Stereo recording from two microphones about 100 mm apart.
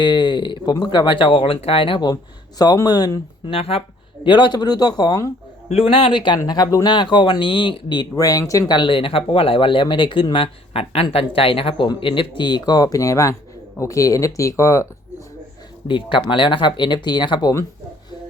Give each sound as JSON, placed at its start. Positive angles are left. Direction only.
{"t": 0.0, "sound": "speech", "side_deg": 50}
{"t": 2.6, "sound": "speech", "side_deg": 40}
{"t": 3.5, "sound": "speech", "side_deg": 70}
{"t": 5.6, "sound": "speech", "side_deg": 90}
{"t": 6.5, "sound": "speech", "side_deg": 35}
{"t": 6.8, "sound": "speech", "side_deg": 50}
{"t": 8.1, "sound": "speech", "side_deg": 35}
{"t": 8.7, "sound": "speech", "side_deg": 55}
{"t": 10.3, "sound": "speech", "side_deg": 70}
{"t": 12.4, "sound": "speech", "side_deg": 45}
{"t": 15.9, "sound": "speech", "side_deg": 55}